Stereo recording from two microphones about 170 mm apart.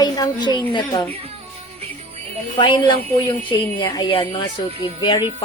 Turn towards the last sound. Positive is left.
turn(degrees=25)  # may be behind; listen again after turning